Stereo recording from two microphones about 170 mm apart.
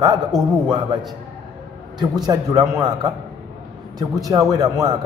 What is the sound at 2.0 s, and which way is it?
A man's voice, 25° right (ahead or behind).